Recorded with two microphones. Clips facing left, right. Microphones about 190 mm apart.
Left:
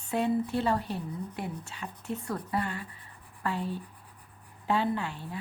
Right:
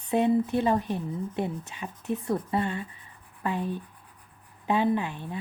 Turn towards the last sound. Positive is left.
turn(degrees=-20)  # may be behind; listen again after turning